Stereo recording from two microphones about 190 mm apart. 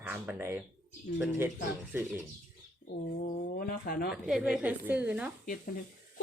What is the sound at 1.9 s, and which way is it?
Speech, 10° right (ahead or behind).